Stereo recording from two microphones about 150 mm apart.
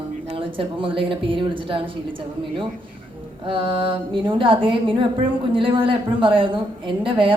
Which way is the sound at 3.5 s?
35° right (ahead or behind).